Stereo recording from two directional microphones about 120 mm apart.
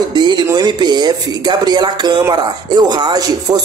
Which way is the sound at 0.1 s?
40° right (ahead or behind).